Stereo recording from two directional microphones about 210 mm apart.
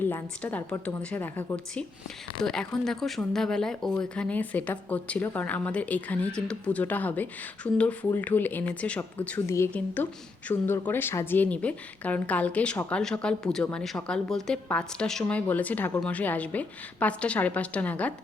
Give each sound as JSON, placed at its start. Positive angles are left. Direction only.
{"t": 0.0, "sound": "speech", "side_deg": 10}